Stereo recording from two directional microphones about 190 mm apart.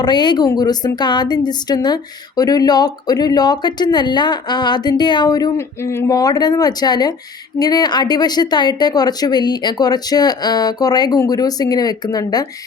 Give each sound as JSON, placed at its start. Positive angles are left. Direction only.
{"t": 0.0, "sound": "a woman's voice", "side_deg": 25}